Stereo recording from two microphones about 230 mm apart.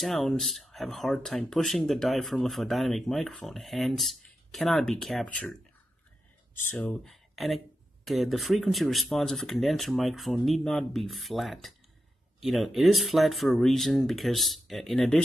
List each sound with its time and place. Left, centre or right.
0.0 s speech: centre